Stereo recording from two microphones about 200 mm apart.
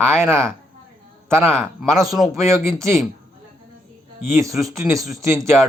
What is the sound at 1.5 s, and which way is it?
Speech, centre (ahead or behind).